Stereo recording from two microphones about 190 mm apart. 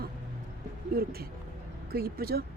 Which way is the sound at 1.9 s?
55° right (ahead or behind).